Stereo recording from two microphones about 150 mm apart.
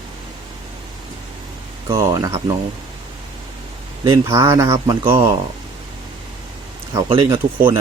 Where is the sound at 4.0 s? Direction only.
20° right (ahead or behind).